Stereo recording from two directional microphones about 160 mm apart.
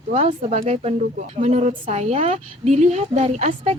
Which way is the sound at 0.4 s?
40° right (ahead or behind).